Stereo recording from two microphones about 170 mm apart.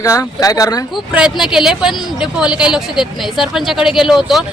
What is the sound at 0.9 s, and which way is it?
Speech, 5° right (ahead or behind).